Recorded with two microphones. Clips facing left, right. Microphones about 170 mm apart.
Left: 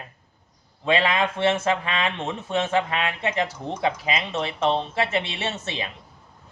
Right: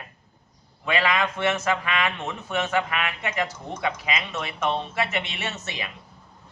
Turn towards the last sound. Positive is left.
turn(degrees=30)  # may be behind; listen again after turning